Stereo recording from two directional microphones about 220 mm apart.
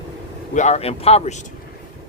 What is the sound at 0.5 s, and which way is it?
Speech, 30° left (ahead or behind).